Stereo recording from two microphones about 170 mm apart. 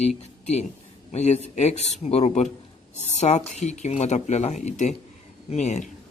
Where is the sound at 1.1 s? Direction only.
40° left (ahead or behind).